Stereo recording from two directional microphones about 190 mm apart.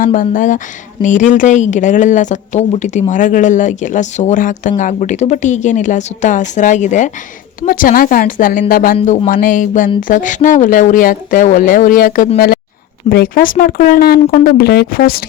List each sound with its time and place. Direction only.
0.0 s speech: 45° left (ahead or behind)
9.0 s speech: 30° left (ahead or behind)
9.3 s speech: 45° left (ahead or behind)